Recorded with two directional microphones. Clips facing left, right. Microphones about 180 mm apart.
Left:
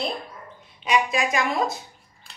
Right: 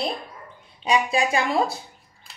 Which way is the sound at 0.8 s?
30° right (ahead or behind).